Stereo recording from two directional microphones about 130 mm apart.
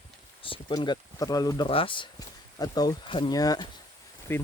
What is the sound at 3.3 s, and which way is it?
Speech, 30° left (ahead or behind).